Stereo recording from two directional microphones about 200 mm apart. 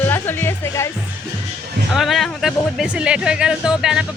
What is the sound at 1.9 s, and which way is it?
Speech, centre (ahead or behind).